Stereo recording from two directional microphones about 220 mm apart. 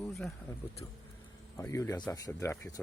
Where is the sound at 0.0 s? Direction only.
Centre (ahead or behind).